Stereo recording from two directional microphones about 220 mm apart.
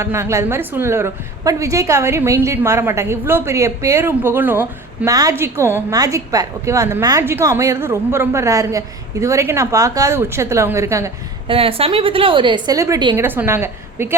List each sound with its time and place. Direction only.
0.0 s a woman's voice: 10° right (ahead or behind)
11.4 s a woman's voice: 25° right (ahead or behind)